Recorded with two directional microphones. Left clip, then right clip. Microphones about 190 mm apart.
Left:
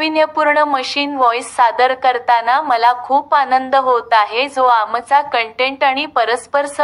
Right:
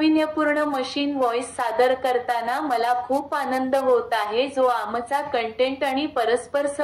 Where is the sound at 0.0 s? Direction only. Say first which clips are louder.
Left 7 dB; 30° left (ahead or behind).